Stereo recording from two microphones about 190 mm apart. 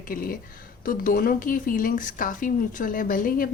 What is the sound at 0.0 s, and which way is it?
Speech, 50° left (ahead or behind).